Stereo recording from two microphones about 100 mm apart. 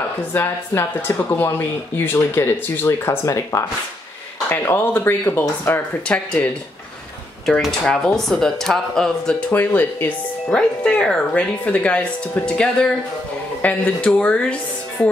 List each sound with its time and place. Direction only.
0.3 s speech: 20° left (ahead or behind)
7.6 s speech: 5° left (ahead or behind)
9.5 s speech: 20° left (ahead or behind)